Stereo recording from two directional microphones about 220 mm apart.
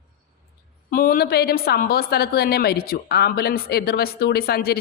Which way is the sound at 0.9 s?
40° left (ahead or behind).